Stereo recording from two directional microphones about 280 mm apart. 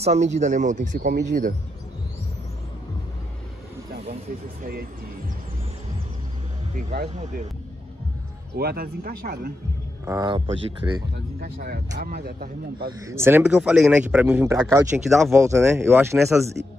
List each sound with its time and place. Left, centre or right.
0.0 s speech: right
6.9 s speech: right
8.5 s speech: right
10.0 s speech: centre
11.3 s speech: right
13.0 s a man's voice: centre